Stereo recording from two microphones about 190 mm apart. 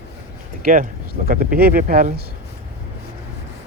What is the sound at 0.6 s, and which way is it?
Speech, 50° right (ahead or behind).